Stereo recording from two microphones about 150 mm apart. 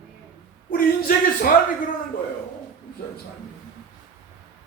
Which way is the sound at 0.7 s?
75° left (ahead or behind).